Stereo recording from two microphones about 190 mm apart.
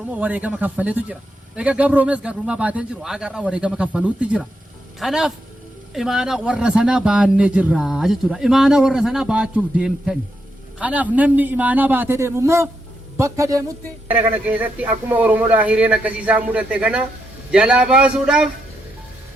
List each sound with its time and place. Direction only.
0.1 s a man's voice: 5° right (ahead or behind)